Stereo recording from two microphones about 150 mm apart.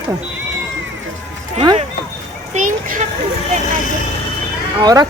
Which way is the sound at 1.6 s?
40° right (ahead or behind).